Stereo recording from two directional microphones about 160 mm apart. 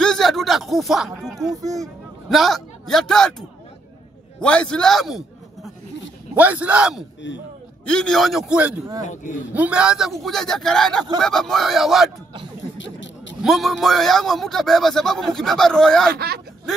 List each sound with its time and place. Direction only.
0.0 s a sound: 5° left (ahead or behind)
1.5 s speech: 20° right (ahead or behind)
2.2 s a man's voice: centre (ahead or behind)
7.8 s a man's voice: 5° left (ahead or behind)
9.0 s speech: 50° left (ahead or behind)
9.5 s a man's voice: 10° right (ahead or behind)
13.4 s a man's voice: centre (ahead or behind)